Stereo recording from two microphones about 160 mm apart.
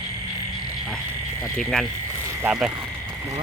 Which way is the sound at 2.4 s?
10° right (ahead or behind).